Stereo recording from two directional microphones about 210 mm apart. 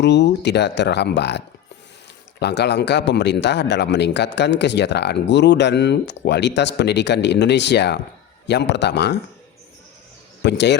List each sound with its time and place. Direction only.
0.0 s a man's voice: 55° left (ahead or behind)
10.4 s speech: 55° left (ahead or behind)